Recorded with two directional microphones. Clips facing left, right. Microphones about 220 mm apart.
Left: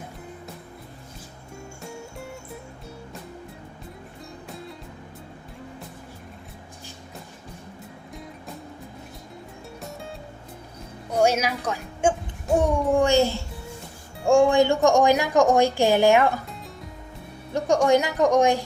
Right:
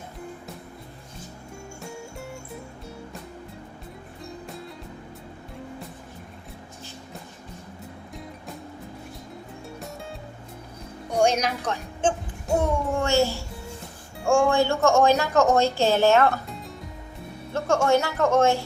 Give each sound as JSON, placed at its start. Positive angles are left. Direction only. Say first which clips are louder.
{"t": 4.4, "sound": "music", "louder": "even", "side_deg": 0}
{"t": 11.1, "sound": "a child's voice", "louder": "left 1 dB", "side_deg": 5}
{"t": 17.5, "sound": "a woman's voice", "louder": "left 2 dB", "side_deg": 15}